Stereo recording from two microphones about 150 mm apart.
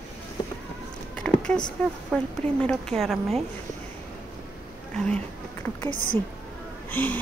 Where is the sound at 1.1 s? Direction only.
5° left (ahead or behind).